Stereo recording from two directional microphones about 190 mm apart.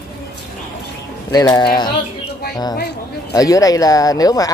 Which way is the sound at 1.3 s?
20° left (ahead or behind).